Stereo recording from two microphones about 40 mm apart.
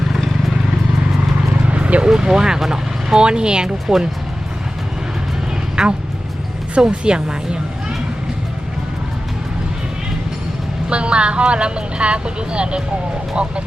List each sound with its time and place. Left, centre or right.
1.6 s vehicle: right
2.0 s speech: centre
5.8 s speech: centre
10.8 s speech: right